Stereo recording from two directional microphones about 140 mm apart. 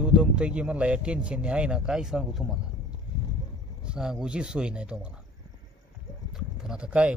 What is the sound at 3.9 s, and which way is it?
Speech, 5° right (ahead or behind).